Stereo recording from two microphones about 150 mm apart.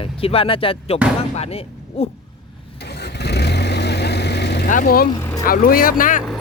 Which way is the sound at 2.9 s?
90° left.